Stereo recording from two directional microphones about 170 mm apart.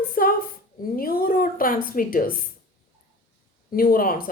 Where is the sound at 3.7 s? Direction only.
55° left (ahead or behind).